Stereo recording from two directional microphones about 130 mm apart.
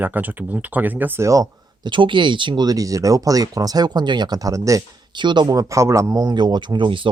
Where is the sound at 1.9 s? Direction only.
40° right (ahead or behind).